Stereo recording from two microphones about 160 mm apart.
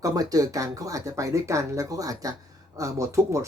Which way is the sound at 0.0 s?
20° right (ahead or behind).